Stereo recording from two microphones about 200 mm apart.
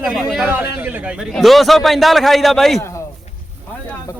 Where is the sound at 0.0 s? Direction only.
5° right (ahead or behind).